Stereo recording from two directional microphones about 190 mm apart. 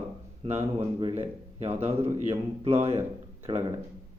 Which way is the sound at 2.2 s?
35° right (ahead or behind).